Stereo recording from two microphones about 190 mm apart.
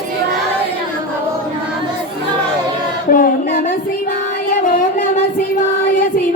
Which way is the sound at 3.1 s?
45° left (ahead or behind).